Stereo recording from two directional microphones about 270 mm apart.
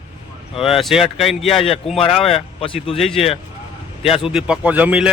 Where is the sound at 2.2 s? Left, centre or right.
Left.